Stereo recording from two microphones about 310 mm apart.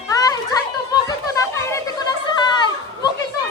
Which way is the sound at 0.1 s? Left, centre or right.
Centre.